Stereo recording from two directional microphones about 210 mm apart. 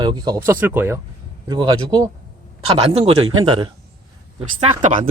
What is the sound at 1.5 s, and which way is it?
Speech, 20° right (ahead or behind).